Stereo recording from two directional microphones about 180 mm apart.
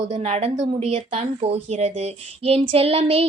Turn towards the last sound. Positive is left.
turn(degrees=-35)  # may be behind; listen again after turning